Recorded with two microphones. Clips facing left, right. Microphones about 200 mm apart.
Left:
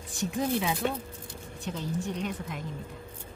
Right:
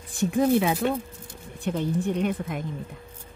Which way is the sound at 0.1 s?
55° right (ahead or behind).